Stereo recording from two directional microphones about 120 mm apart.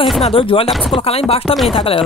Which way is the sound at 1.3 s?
50° left (ahead or behind).